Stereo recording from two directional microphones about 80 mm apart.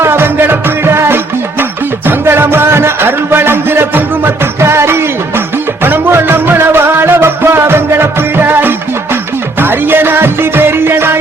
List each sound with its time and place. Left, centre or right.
0.0 s music: right